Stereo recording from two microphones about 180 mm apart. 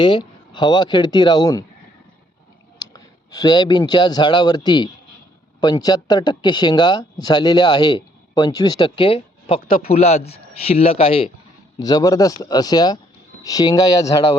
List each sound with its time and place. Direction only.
0.0 s speech: 25° left (ahead or behind)
2.9 s speech: 20° left (ahead or behind)
11.8 s speech: 20° left (ahead or behind)